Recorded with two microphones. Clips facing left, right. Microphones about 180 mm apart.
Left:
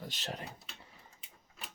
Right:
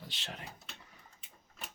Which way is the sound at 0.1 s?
40° left (ahead or behind).